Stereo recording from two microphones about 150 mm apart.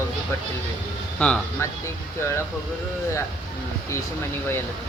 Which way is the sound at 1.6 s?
20° left (ahead or behind).